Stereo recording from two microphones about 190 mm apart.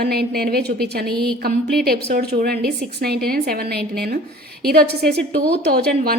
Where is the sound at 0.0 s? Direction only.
55° right (ahead or behind).